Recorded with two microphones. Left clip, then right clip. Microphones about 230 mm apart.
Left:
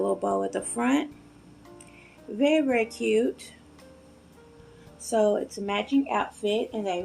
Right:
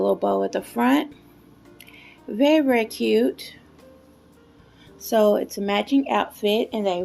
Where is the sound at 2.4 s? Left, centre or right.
Right.